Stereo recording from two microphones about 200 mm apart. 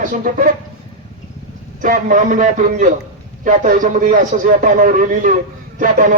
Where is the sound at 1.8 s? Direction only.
40° right (ahead or behind).